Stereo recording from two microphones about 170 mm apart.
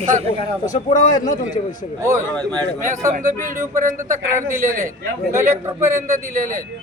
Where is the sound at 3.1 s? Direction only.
50° right (ahead or behind).